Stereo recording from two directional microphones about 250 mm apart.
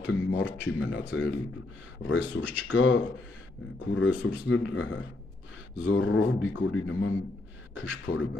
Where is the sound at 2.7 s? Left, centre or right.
Left.